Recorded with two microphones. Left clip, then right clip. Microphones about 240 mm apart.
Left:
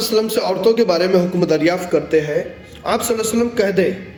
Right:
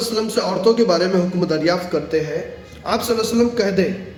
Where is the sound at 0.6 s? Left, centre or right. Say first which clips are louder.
Even; centre.